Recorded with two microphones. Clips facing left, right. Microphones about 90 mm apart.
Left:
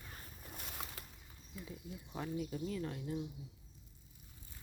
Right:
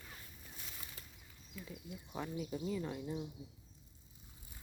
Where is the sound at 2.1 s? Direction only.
5° right (ahead or behind).